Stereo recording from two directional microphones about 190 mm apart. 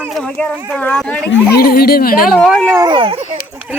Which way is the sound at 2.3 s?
Centre (ahead or behind).